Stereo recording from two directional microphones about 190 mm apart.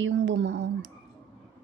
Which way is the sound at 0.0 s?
70° right (ahead or behind).